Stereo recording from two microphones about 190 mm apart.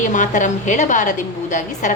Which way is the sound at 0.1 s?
40° left (ahead or behind).